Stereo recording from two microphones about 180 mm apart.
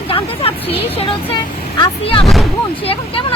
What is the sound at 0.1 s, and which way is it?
Speech, 30° left (ahead or behind).